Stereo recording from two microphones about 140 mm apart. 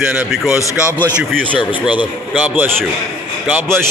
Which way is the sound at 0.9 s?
10° right (ahead or behind).